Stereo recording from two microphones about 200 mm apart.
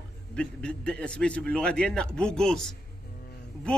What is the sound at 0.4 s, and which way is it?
A man's voice, 5° left (ahead or behind).